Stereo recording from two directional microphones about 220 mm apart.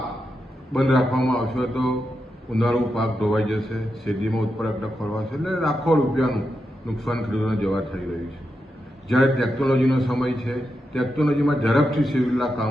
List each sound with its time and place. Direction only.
0.7 s a man's voice: centre (ahead or behind)
9.0 s a man's voice: centre (ahead or behind)